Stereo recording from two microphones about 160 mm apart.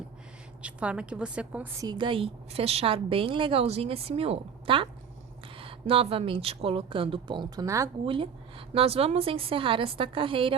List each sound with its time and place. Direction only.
0.6 s a woman's voice: 5° right (ahead or behind)
1.8 s a woman's voice: 25° right (ahead or behind)
8.0 s a woman's voice: 35° right (ahead or behind)